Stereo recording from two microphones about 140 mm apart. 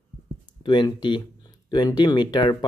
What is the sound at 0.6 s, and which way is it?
Speech, 35° left (ahead or behind).